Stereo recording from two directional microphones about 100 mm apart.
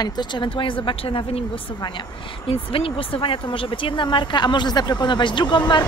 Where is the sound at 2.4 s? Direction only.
65° left (ahead or behind).